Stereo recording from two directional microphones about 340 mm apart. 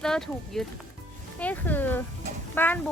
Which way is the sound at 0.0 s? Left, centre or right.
Centre.